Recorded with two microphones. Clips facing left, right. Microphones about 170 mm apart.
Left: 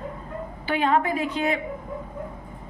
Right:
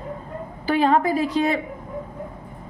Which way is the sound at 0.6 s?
35° right (ahead or behind).